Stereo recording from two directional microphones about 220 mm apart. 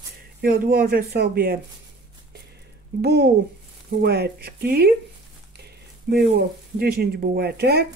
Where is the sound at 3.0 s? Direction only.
45° right (ahead or behind).